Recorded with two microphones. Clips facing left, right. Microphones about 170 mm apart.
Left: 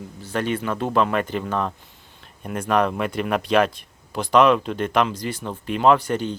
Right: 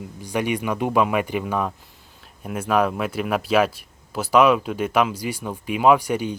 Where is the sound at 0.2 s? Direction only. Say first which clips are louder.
Right 1 dB; 15° right (ahead or behind).